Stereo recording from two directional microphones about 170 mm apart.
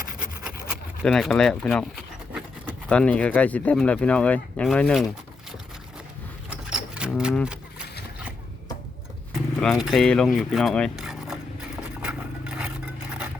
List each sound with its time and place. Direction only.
0.2 s rub: 5° right (ahead or behind)
2.9 s speech: 5° left (ahead or behind)
6.5 s a sound: 5° right (ahead or behind)
9.6 s speech: centre (ahead or behind)
12.0 s scrape: 5° right (ahead or behind)